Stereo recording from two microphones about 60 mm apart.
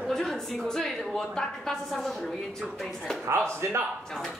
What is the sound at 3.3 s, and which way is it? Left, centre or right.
Speech, right.